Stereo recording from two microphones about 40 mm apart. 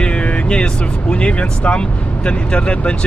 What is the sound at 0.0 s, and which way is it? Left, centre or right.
Music, left.